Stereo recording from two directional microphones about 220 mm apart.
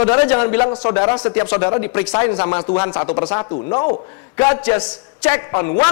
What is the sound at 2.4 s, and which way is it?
Speech, 30° left (ahead or behind).